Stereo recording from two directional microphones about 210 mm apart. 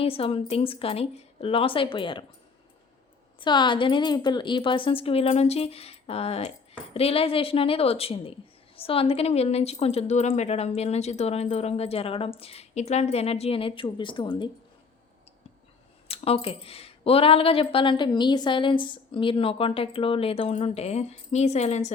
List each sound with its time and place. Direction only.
0.0 s speech: 25° left (ahead or behind)
3.4 s speech: 20° left (ahead or behind)
16.0 s speech: 30° left (ahead or behind)